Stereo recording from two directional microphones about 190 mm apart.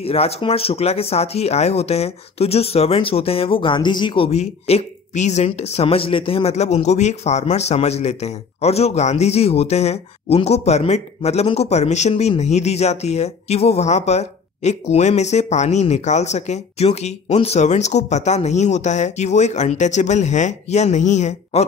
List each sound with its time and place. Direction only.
0.0 s speech: 30° left (ahead or behind)